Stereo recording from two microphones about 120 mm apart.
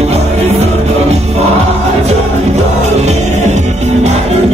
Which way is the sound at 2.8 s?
70° right (ahead or behind).